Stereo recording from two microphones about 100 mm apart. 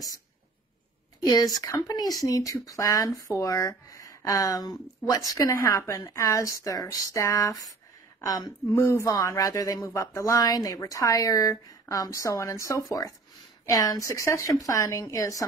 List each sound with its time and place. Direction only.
1.2 s speech: 40° left (ahead or behind)